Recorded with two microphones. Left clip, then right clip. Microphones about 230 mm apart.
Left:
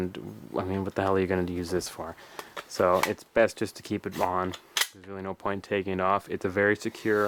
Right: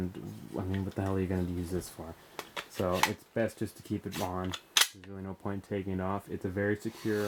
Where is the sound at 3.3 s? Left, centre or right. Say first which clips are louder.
Left 9 dB; centre.